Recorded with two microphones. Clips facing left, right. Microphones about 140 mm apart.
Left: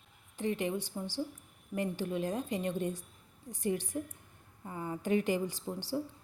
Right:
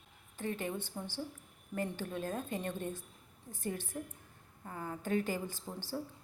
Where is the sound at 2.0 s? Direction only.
15° left (ahead or behind).